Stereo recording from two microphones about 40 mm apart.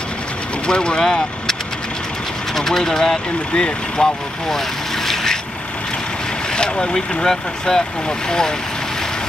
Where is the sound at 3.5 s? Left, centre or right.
Left.